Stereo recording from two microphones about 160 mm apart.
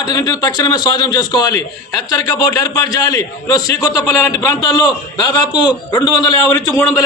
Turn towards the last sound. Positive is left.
turn(degrees=20)  # may be behind; listen again after turning